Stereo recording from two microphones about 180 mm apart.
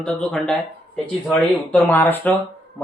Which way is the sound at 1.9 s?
10° left (ahead or behind).